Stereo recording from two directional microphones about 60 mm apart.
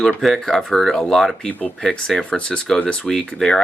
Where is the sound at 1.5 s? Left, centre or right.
Left.